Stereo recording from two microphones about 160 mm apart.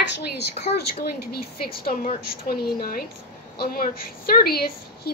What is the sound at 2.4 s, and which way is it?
Speech, 70° left (ahead or behind).